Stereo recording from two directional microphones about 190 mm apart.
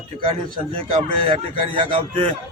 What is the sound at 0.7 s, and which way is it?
A man's voice, 30° right (ahead or behind).